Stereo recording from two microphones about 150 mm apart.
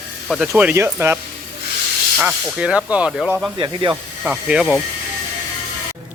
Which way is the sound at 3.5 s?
30° right (ahead or behind).